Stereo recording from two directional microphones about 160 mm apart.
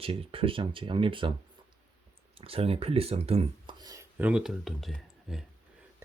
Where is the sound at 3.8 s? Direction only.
25° right (ahead or behind).